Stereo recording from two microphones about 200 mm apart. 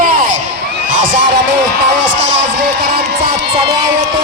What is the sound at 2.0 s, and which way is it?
Speech, 65° right (ahead or behind).